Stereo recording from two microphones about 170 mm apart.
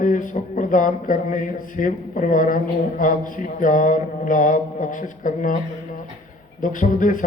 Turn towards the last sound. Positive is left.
turn(degrees=50)  # may be behind; listen again after turning